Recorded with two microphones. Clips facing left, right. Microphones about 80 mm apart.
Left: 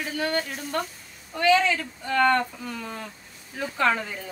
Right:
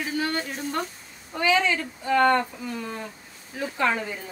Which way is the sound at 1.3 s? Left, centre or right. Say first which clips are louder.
Left 2 dB; centre.